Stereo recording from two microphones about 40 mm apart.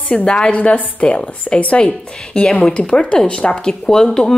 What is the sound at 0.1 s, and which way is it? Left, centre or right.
Speech, left.